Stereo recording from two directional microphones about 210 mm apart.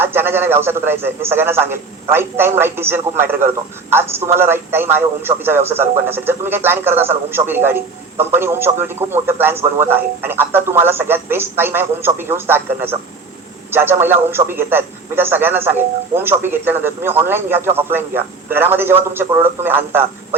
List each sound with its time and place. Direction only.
0.0 s a man's voice: 10° right (ahead or behind)